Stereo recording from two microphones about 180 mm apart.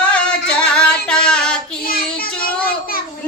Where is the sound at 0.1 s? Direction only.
5° left (ahead or behind).